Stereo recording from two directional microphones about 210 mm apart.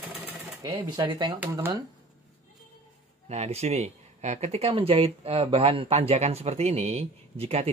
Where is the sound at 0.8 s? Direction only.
20° right (ahead or behind).